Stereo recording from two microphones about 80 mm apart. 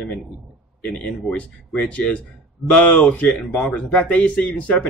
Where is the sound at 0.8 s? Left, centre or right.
Centre.